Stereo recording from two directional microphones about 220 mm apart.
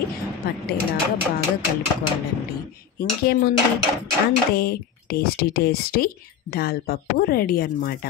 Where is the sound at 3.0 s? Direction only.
45° left (ahead or behind).